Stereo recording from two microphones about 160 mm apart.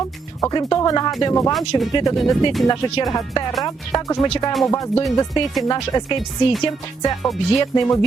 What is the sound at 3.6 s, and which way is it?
Speech, 25° left (ahead or behind).